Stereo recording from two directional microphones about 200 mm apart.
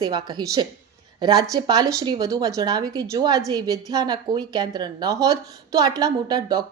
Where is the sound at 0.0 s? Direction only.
20° right (ahead or behind).